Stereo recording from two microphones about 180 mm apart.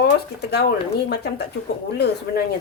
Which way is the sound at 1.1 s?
65° left (ahead or behind).